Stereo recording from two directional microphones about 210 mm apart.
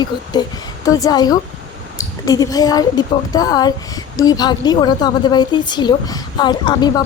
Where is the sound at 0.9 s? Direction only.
15° left (ahead or behind).